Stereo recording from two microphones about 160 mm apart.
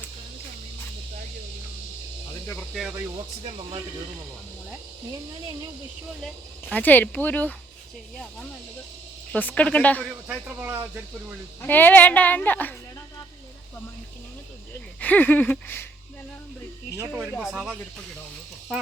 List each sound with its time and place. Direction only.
6.2 s speech: 10° left (ahead or behind)
9.3 s speech: 10° left (ahead or behind)
10.0 s speech: 5° right (ahead or behind)
11.6 s speech: 10° left (ahead or behind)
15.0 s speech: 10° left (ahead or behind)
17.1 s speech: centre (ahead or behind)